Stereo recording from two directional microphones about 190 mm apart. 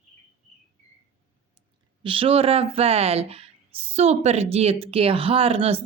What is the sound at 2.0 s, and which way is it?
A woman's voice, 30° right (ahead or behind).